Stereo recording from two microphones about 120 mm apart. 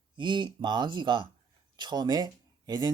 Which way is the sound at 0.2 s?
40° right (ahead or behind).